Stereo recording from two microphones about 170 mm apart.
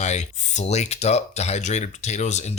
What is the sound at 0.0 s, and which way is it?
Speech, 45° left (ahead or behind).